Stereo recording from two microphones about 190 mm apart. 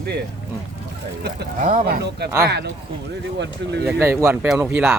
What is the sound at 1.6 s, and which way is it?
Speech, 45° right (ahead or behind).